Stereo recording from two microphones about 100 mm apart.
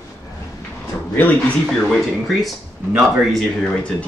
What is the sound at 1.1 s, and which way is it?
Speech, 15° left (ahead or behind).